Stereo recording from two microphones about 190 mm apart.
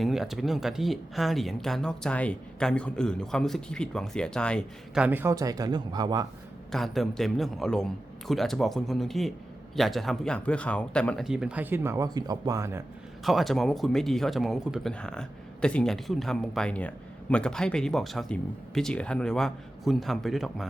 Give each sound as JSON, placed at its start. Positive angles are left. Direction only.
{"t": 0.0, "sound": "speech", "side_deg": 0}
{"t": 5.0, "sound": "speech", "side_deg": -10}
{"t": 6.7, "sound": "speech", "side_deg": 0}
{"t": 13.2, "sound": "speech", "side_deg": 0}